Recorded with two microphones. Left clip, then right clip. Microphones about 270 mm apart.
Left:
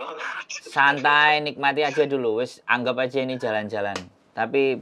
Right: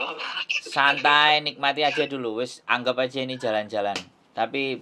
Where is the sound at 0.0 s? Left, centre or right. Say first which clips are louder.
Right 1 dB; centre.